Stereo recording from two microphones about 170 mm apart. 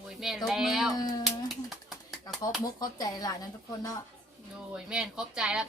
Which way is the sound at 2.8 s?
20° left (ahead or behind).